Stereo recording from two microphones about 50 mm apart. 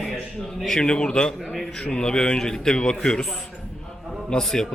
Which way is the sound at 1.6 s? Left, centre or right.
Centre.